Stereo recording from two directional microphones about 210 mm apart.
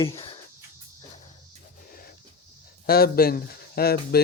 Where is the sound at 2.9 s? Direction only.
45° left (ahead or behind).